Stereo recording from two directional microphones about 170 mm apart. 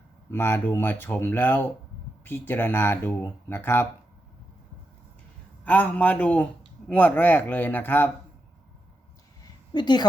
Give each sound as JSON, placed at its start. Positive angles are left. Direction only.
{"t": 0.3, "sound": "a man's voice", "side_deg": 15}
{"t": 5.6, "sound": "a man's voice", "side_deg": 10}
{"t": 9.4, "sound": "a sound", "side_deg": 25}